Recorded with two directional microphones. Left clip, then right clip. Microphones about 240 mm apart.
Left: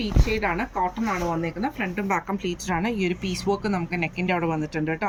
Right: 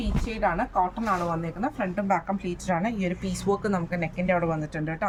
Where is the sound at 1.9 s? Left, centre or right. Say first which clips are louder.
Even; centre.